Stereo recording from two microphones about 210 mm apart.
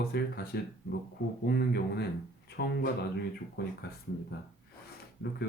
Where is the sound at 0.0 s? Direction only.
50° left (ahead or behind).